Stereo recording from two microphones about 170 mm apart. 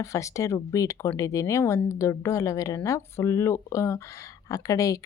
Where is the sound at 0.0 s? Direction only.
15° left (ahead or behind).